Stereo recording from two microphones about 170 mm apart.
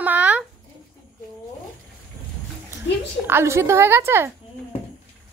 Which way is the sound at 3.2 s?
15° right (ahead or behind).